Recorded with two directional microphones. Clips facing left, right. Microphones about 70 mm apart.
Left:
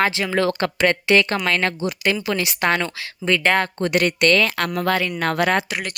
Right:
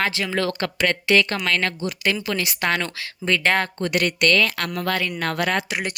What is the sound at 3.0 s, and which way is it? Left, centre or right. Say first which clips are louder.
Speech: left 2 dB; centre.